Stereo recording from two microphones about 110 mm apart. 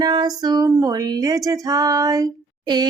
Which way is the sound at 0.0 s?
40° right (ahead or behind).